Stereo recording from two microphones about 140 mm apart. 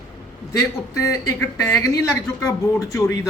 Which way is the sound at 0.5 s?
20° left (ahead or behind).